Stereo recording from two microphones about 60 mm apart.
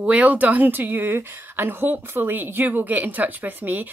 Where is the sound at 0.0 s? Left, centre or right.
Right.